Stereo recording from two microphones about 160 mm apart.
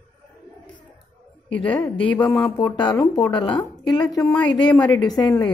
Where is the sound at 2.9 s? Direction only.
20° left (ahead or behind).